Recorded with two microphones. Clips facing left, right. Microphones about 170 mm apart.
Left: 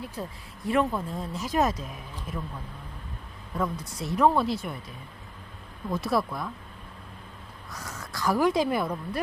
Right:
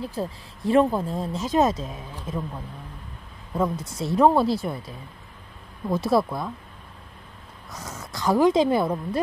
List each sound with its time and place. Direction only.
0.0 s speech: 30° right (ahead or behind)
3.5 s speech: 25° right (ahead or behind)
5.9 s speech: 30° right (ahead or behind)
7.7 s speech: 20° right (ahead or behind)